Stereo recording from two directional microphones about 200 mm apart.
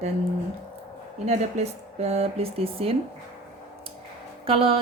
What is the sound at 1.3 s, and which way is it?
A woman's voice, 30° right (ahead or behind).